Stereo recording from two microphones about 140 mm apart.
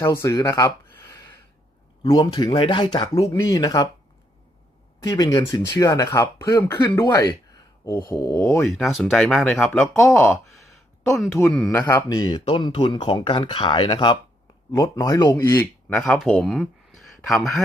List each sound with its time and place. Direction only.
0.0 s speech: 20° left (ahead or behind)
5.0 s a man's voice: 30° left (ahead or behind)
8.0 s speech: 25° left (ahead or behind)
8.6 s speech: centre (ahead or behind)
10.0 s speech: 20° left (ahead or behind)
10.5 s a sound: centre (ahead or behind)
11.4 s speech: 5° left (ahead or behind)
11.7 s a man's voice: 20° left (ahead or behind)
16.0 s speech: 5° left (ahead or behind)